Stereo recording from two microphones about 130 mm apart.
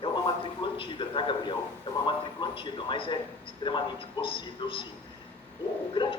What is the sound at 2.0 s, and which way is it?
A man's voice, 40° left (ahead or behind).